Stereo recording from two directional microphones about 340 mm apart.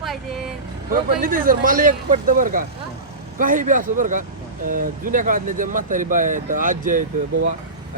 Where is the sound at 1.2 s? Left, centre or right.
Right.